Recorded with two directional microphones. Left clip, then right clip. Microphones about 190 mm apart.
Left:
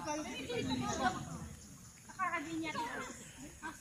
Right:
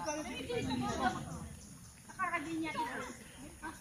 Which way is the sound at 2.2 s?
20° left (ahead or behind).